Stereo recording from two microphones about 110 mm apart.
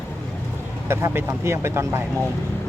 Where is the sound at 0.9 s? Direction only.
25° right (ahead or behind).